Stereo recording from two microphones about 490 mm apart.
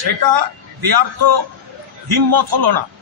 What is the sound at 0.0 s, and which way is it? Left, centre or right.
A man's voice, right.